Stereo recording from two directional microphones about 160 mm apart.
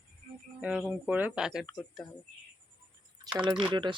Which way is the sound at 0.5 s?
10° right (ahead or behind).